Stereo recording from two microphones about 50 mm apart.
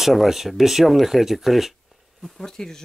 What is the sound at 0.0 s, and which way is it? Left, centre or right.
Speech, centre.